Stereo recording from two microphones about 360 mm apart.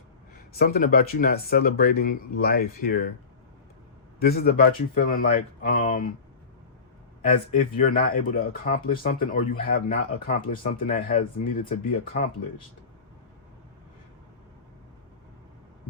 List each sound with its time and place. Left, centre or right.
0.5 s speech: left
4.2 s speech: left
7.3 s speech: left